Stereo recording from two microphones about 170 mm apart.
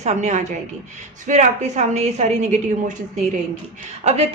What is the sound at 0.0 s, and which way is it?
A woman's voice, 40° right (ahead or behind).